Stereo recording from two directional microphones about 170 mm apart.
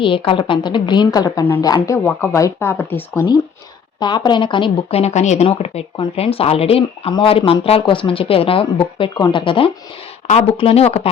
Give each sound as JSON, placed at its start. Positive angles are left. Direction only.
{"t": 0.0, "sound": "a woman's voice", "side_deg": 30}
{"t": 4.0, "sound": "a woman's voice", "side_deg": 25}